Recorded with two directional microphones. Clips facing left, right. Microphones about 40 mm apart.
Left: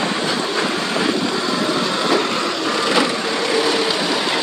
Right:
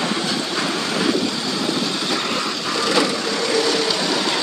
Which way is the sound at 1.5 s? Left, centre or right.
Left.